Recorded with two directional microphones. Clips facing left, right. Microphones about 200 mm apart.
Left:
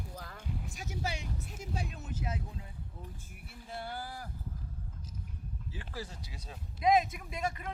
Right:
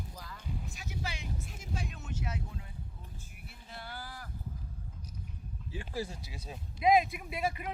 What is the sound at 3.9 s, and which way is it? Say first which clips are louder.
Speech: left 4 dB; 25° left (ahead or behind).